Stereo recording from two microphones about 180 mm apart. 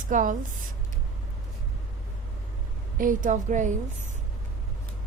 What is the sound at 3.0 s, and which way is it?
Speech, 50° right (ahead or behind).